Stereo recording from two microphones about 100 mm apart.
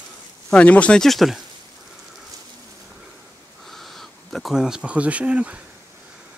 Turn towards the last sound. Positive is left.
turn(degrees=-10)  # may be behind; listen again after turning